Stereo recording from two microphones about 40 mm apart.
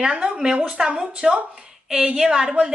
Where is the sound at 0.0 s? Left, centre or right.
Right.